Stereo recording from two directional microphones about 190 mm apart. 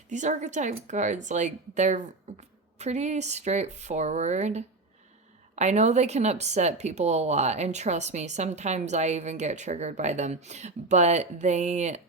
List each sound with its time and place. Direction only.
0.1 s speech: 40° right (ahead or behind)